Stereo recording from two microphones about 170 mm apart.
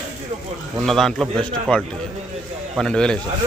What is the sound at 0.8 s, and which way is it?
A man's voice, centre (ahead or behind).